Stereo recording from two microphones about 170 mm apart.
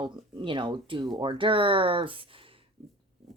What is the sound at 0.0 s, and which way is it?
Speech, 30° right (ahead or behind).